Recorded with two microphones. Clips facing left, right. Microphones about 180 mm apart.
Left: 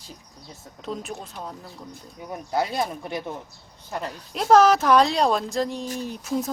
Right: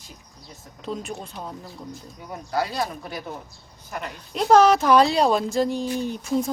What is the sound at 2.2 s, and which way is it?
Speech, 20° left (ahead or behind).